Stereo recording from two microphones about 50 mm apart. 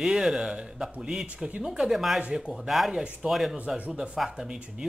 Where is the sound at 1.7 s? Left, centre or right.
Centre.